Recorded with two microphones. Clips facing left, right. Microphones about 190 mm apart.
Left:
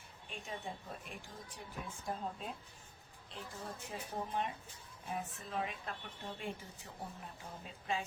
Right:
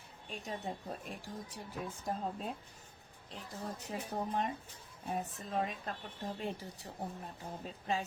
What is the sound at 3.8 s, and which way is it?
A woman's voice, 40° right (ahead or behind).